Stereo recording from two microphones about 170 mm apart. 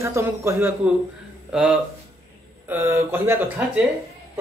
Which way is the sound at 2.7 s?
10° right (ahead or behind).